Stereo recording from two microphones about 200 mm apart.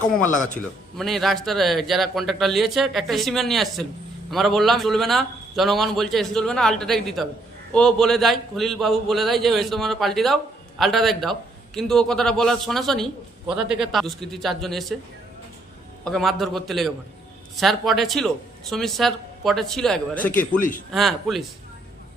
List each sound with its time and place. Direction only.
0.9 s a man's voice: centre (ahead or behind)
16.0 s a man's voice: centre (ahead or behind)
20.4 s a man's voice: 40° left (ahead or behind)
20.9 s a man's voice: centre (ahead or behind)